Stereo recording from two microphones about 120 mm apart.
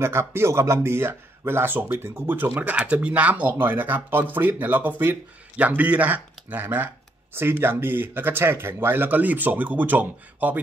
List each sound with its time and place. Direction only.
0.0 s speech: 20° right (ahead or behind)